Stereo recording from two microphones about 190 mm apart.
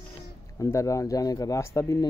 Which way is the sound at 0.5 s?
15° left (ahead or behind).